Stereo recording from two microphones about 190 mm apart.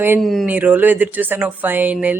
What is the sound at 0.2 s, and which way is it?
Speech, centre (ahead or behind).